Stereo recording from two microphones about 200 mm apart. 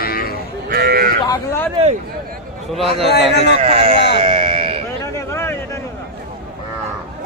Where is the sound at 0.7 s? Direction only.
50° right (ahead or behind).